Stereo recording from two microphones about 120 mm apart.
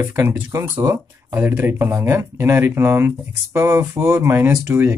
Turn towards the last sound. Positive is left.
turn(degrees=-20)  # may be behind; listen again after turning